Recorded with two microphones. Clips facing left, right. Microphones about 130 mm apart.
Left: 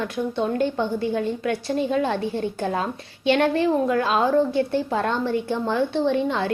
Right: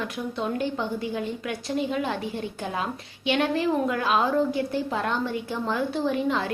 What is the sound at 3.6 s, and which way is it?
A woman's voice, 30° left (ahead or behind).